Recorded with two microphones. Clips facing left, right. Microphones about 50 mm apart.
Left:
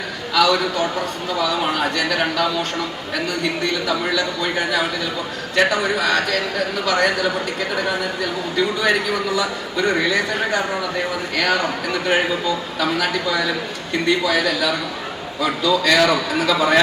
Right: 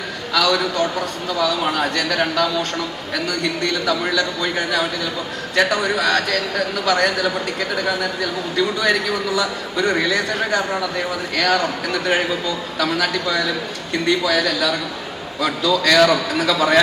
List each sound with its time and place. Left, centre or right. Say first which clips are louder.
0.3 s a man's voice: left 1 dB; centre
3.8 s a man's voice: right 1 dB; centre
8.5 s a man's voice: even; centre